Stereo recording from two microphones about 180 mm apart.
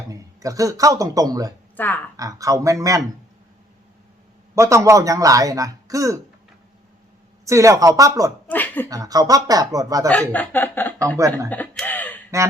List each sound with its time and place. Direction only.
0.1 s speech: 20° right (ahead or behind)
1.7 s speech: 10° left (ahead or behind)
2.1 s speech: 20° right (ahead or behind)
4.5 s a man's voice: 15° right (ahead or behind)
7.4 s speech: 15° right (ahead or behind)
8.4 s a sound: 10° left (ahead or behind)
8.9 s speech: 20° right (ahead or behind)
10.1 s speech: 10° left (ahead or behind)
11.4 s a sound: 10° left (ahead or behind)